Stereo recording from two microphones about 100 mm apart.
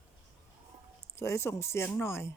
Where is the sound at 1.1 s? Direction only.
30° left (ahead or behind).